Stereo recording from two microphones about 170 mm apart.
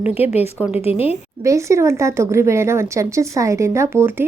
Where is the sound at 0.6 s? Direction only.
10° right (ahead or behind).